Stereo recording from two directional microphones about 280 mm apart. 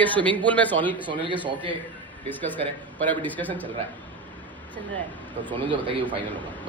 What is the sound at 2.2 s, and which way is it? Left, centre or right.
A man's voice, centre.